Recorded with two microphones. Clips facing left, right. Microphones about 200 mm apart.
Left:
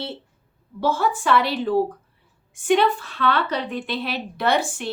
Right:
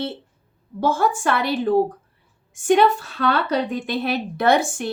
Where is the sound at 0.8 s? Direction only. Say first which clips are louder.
Right 2 dB; 50° right (ahead or behind).